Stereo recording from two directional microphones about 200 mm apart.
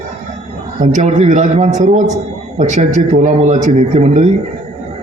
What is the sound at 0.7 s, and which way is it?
A man's voice, 35° right (ahead or behind).